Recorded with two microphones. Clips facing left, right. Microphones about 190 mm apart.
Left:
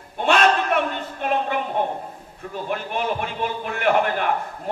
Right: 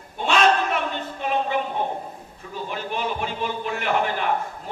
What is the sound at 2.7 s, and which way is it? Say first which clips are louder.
A man's voice: left 3 dB; 55° left (ahead or behind).